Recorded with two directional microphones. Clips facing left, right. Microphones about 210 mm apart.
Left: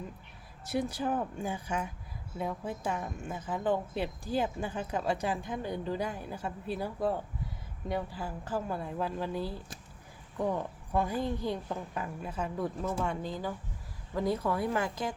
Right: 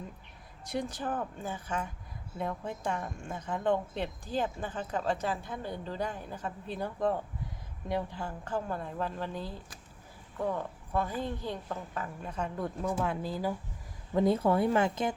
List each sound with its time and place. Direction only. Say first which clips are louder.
0.6 s a woman's voice: left 3 dB; 5° left (ahead or behind)
14.2 s speech: right 4 dB; 25° right (ahead or behind)